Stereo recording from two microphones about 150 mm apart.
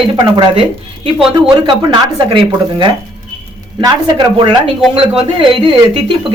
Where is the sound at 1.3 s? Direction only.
30° right (ahead or behind).